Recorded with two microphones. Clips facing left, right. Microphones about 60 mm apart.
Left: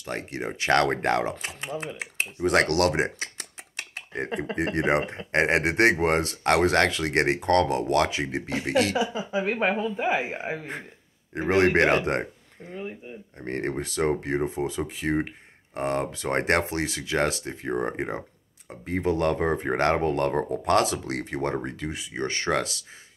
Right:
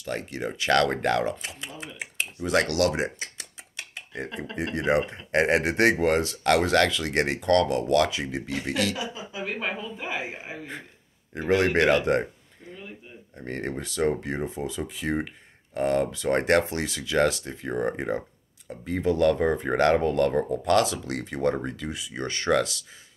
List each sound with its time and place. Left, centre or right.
0.0 s speech: left
13.5 s speech: left